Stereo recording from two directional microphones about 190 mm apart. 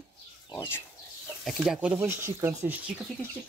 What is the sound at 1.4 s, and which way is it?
Speech, 5° right (ahead or behind).